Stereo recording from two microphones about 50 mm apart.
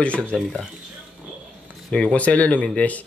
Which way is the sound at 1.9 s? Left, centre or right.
Left.